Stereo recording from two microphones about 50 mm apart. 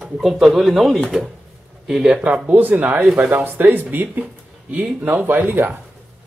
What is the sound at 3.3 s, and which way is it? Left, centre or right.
Speech, right.